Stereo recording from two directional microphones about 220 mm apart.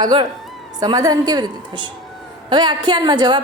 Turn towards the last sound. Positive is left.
turn(degrees=-20)  # may be behind; listen again after turning